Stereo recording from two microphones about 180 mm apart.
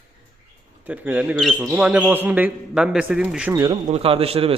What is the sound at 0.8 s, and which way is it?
Speech, 10° right (ahead or behind).